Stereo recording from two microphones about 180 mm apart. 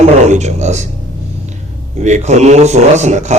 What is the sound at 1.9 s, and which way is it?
A man's voice, 40° right (ahead or behind).